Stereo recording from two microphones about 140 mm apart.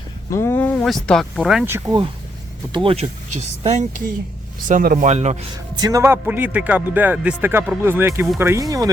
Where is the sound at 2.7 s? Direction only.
40° right (ahead or behind).